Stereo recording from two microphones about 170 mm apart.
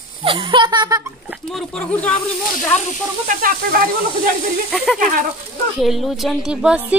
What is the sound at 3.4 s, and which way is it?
Speech, 55° right (ahead or behind).